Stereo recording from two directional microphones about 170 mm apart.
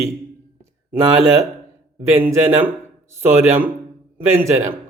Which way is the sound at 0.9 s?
15° right (ahead or behind).